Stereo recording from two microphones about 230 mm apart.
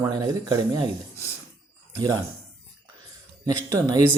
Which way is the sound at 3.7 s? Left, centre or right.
Centre.